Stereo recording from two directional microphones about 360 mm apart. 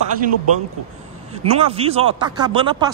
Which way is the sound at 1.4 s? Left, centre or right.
Centre.